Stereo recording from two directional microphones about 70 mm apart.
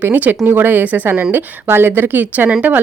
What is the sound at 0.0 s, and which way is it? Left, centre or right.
Speech, right.